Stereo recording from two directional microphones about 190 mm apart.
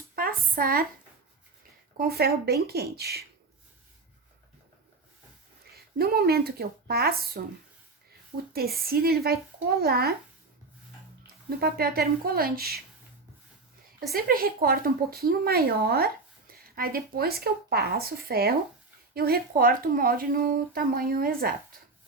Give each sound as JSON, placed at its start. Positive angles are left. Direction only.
{"t": 0.2, "sound": "a sound", "side_deg": -50}
{"t": 2.0, "sound": "speech", "side_deg": -55}
{"t": 5.7, "sound": "speech", "side_deg": -55}
{"t": 8.5, "sound": "speech", "side_deg": -55}
{"t": 11.4, "sound": "speech", "side_deg": -55}
{"t": 14.1, "sound": "speech", "side_deg": -50}